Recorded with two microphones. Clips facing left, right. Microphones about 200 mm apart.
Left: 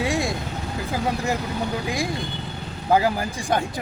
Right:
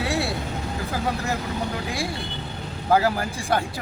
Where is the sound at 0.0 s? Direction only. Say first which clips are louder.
Left 2 dB; 15° left (ahead or behind).